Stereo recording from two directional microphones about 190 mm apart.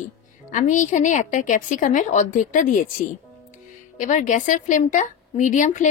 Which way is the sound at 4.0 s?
40° left (ahead or behind).